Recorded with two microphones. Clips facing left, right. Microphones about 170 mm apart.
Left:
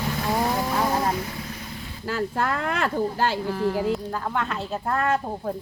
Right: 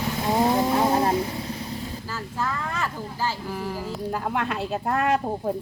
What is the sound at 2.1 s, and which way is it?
Speech, 65° left (ahead or behind).